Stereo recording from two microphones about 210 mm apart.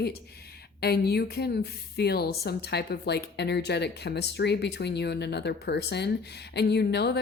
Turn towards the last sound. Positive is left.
turn(degrees=50)  # may be behind; listen again after turning